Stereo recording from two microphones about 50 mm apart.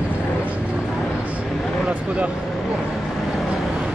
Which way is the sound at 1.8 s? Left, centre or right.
Right.